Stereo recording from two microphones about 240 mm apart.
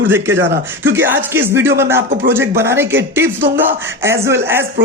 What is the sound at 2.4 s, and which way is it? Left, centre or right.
A woman's voice, centre.